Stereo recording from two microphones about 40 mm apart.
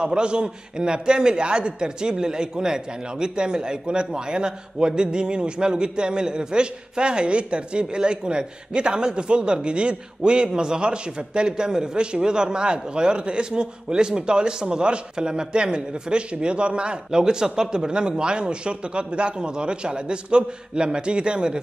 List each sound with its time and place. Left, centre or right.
0.0 s a man's voice: right